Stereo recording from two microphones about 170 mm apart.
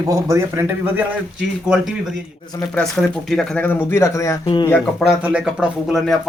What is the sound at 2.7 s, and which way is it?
Speech, centre (ahead or behind).